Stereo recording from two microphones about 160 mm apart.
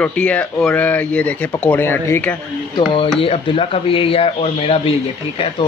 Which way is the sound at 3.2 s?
35° left (ahead or behind).